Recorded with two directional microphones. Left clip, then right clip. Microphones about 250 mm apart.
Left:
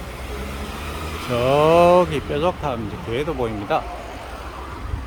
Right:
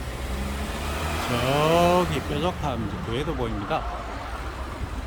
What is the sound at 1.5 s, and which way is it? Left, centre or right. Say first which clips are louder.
Speech: left 7 dB; centre.